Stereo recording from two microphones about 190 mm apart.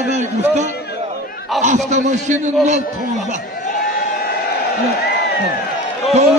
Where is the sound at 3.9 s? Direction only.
50° left (ahead or behind).